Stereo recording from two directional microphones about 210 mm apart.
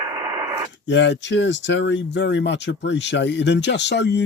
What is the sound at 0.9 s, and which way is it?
Speech, 55° left (ahead or behind).